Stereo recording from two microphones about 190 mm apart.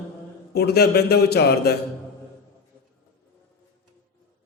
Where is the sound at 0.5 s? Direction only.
55° left (ahead or behind).